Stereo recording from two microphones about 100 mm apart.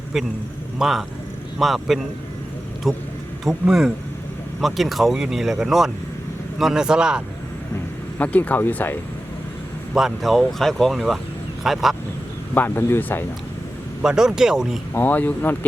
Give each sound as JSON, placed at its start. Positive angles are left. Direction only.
{"t": 0.8, "sound": "speech", "side_deg": 0}
{"t": 8.2, "sound": "speech", "side_deg": 15}
{"t": 9.9, "sound": "speech", "side_deg": 0}
{"t": 12.5, "sound": "speech", "side_deg": 20}
{"t": 14.0, "sound": "speech", "side_deg": -5}
{"t": 14.9, "sound": "speech", "side_deg": 15}